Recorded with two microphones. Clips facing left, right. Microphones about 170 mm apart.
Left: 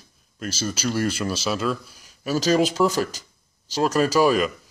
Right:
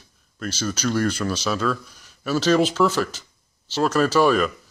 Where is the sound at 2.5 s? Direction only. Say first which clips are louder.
Right 1 dB; 10° left (ahead or behind).